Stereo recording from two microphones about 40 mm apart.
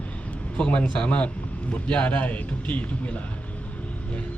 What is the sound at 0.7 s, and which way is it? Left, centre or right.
Speech, left.